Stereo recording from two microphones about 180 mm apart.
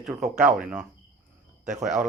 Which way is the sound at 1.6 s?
40° right (ahead or behind).